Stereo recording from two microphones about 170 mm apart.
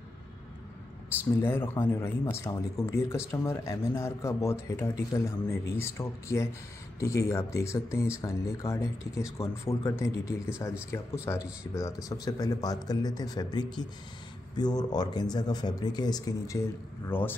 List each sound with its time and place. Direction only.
1.4 s speech: 15° left (ahead or behind)